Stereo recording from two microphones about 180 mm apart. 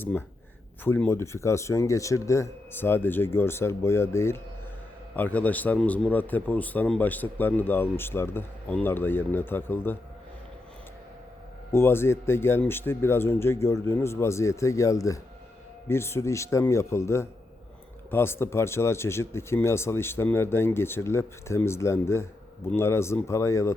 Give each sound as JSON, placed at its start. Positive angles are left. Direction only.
{"t": 0.0, "sound": "a man's voice", "side_deg": 10}
{"t": 11.7, "sound": "a man's voice", "side_deg": 15}